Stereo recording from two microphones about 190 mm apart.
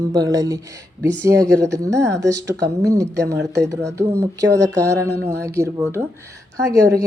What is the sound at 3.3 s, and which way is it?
Speech, 65° right (ahead or behind).